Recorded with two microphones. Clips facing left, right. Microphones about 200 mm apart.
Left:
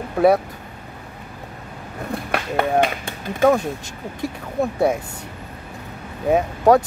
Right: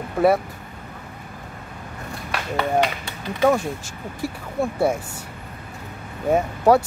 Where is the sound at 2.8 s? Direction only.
50° left (ahead or behind).